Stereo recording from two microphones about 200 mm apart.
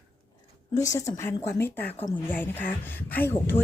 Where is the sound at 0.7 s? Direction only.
15° left (ahead or behind).